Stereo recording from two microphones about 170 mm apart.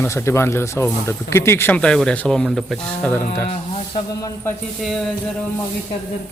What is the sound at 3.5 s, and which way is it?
Speech, 35° left (ahead or behind).